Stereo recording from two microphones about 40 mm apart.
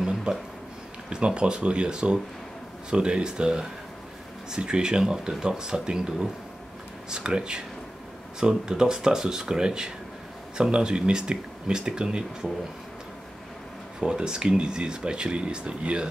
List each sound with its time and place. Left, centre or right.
0.0 s a sound: centre
1.1 s speech: right
13.9 s speech: right